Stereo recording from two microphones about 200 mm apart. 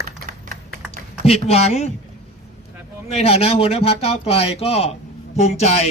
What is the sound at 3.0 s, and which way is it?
A man's voice, 30° left (ahead or behind).